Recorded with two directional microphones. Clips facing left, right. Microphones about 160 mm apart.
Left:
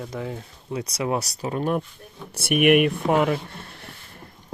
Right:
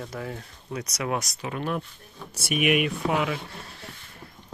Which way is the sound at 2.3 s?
60° left (ahead or behind).